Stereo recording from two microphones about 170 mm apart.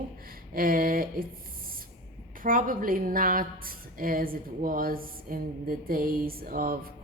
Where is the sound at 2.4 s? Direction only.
55° right (ahead or behind).